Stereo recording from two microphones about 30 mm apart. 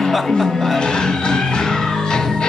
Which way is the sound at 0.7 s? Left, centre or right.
Left.